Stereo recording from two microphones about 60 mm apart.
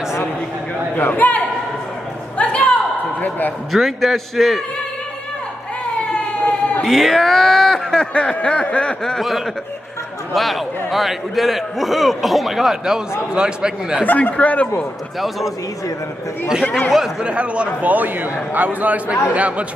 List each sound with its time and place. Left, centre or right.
0.9 s a man's voice: left
2.3 s a sound: left
3.2 s a man's voice: left
3.7 s a man's voice: centre
6.8 s speech: centre
10.3 s a man's voice: centre
14.0 s a man's voice: left
15.1 s a man's voice: centre
17.2 s a man's voice: centre